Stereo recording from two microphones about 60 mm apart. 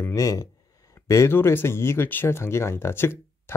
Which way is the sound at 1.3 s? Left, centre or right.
Left.